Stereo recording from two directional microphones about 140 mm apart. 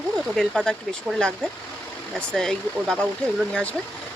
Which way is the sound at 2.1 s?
5° left (ahead or behind).